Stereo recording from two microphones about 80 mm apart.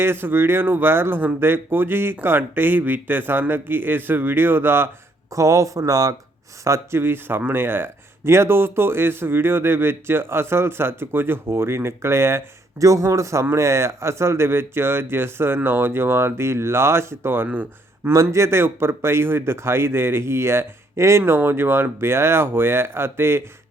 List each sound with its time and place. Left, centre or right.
0.0 s speech: right
5.3 s speech: right
6.7 s speech: right
18.1 s speech: right